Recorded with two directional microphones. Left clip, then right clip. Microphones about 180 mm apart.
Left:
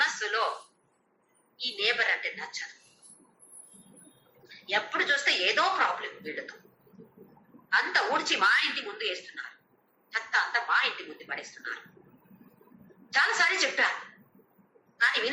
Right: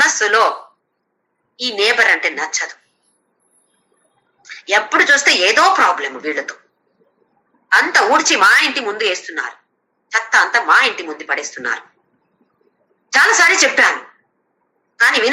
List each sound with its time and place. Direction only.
0.0 s a sound: 55° right (ahead or behind)
1.5 s speech: 55° right (ahead or behind)
4.4 s speech: 55° right (ahead or behind)
7.7 s speech: 55° right (ahead or behind)
13.1 s speech: 60° right (ahead or behind)
14.9 s a woman's voice: 55° right (ahead or behind)